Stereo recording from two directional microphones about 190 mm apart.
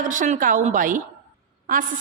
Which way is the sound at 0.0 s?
45° right (ahead or behind).